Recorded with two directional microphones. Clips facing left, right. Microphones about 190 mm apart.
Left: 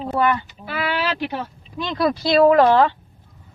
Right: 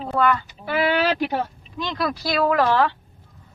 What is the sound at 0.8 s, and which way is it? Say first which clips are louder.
Speech: right 3 dB; 45° right (ahead or behind).